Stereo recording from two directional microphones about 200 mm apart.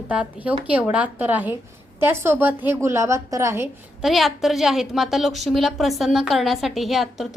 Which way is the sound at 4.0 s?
Centre (ahead or behind).